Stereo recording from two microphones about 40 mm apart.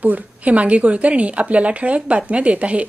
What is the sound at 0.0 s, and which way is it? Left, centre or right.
A woman's voice, right.